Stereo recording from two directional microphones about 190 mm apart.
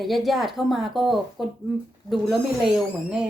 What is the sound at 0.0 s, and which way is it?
A woman's voice, centre (ahead or behind).